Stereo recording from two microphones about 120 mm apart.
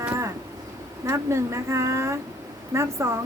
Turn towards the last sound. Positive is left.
turn(degrees=-25)  # may be behind; listen again after turning